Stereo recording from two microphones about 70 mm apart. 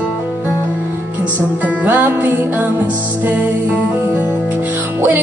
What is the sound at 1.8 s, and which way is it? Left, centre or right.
Music, right.